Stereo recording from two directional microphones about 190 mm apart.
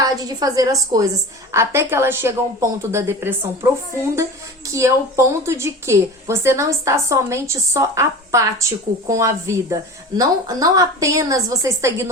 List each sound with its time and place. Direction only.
0.0 s a woman's voice: 20° right (ahead or behind)